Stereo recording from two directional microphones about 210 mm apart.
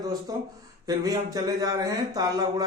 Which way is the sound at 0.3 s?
15° right (ahead or behind).